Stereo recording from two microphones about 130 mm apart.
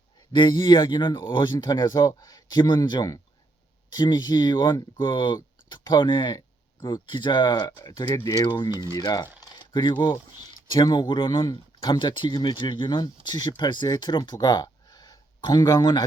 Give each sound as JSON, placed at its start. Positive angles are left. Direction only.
{"t": 0.3, "sound": "speech", "side_deg": 35}